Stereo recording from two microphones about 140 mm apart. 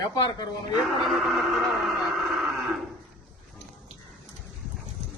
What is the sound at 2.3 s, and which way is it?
Livestock, centre (ahead or behind).